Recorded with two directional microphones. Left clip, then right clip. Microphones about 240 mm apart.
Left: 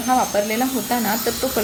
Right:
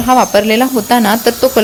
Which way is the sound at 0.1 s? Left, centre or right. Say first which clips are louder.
Right 10 dB; right.